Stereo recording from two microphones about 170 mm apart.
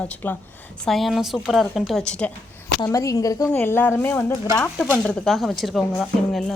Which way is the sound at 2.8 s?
20° left (ahead or behind).